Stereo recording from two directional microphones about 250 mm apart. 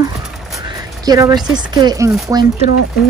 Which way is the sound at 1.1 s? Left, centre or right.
Centre.